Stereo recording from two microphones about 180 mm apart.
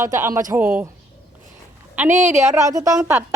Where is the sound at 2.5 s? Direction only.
20° right (ahead or behind).